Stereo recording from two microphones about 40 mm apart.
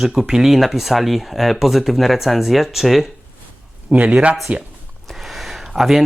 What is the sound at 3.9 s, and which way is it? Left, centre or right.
Speech, right.